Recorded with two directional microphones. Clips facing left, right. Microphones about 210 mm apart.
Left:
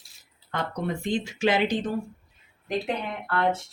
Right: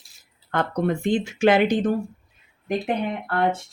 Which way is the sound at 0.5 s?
55° right (ahead or behind).